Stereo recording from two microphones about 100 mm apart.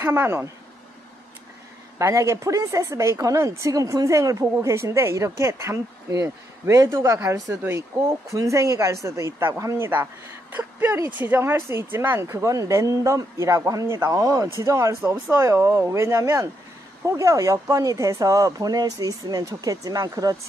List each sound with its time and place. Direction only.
0.0 s speech: 25° right (ahead or behind)
2.0 s speech: 30° right (ahead or behind)